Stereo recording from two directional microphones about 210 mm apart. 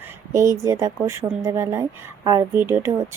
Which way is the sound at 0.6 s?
15° right (ahead or behind).